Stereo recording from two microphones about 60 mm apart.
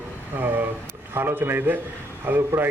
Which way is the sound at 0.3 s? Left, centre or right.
Right.